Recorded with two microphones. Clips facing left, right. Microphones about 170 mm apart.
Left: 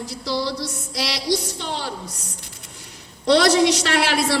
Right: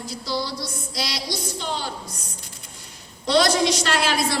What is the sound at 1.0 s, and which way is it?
Speech, 65° left (ahead or behind).